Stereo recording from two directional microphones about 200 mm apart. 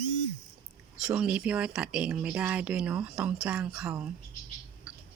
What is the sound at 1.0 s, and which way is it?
Speech, 5° right (ahead or behind).